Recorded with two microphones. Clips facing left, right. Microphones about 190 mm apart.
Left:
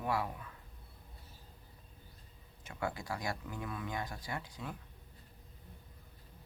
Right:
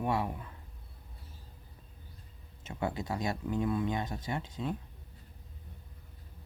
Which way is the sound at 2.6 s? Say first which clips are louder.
Right 4 dB; 25° right (ahead or behind).